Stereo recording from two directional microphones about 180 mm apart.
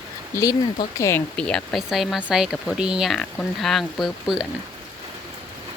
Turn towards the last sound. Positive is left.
turn(degrees=0)  # may be behind; listen again after turning